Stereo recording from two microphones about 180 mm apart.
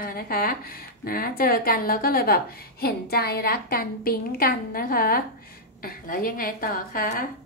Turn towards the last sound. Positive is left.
turn(degrees=50)  # may be behind; listen again after turning